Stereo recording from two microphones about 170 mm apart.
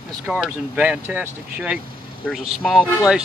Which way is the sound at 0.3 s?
5° right (ahead or behind).